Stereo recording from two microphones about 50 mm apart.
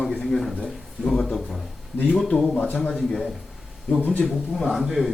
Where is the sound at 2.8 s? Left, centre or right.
Centre.